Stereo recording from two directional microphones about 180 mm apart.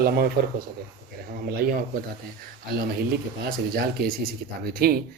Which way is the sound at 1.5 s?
60° right (ahead or behind).